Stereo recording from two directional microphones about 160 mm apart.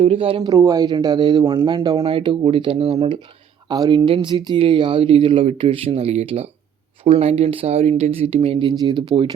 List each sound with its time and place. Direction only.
0.0 s speech: 35° right (ahead or behind)
0.5 s speech: 20° right (ahead or behind); by 3.2 s 40° right (ahead or behind)
3.7 s speech: 25° right (ahead or behind)